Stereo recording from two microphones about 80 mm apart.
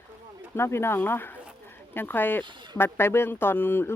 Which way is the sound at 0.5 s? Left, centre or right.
Left.